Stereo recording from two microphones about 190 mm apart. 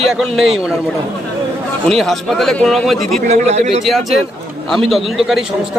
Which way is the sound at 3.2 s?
35° right (ahead or behind).